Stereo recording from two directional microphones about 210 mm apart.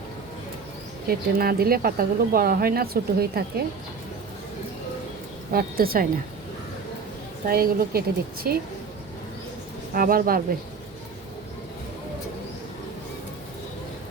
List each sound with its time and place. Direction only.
1.0 s speech: 45° right (ahead or behind)
5.5 s speech: 45° right (ahead or behind)
7.4 s speech: 45° right (ahead or behind)
9.9 s speech: 45° right (ahead or behind)